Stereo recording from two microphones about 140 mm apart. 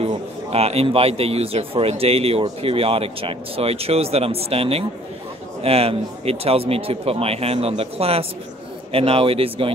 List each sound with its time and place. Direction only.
0.0 s a man's voice: 45° right (ahead or behind)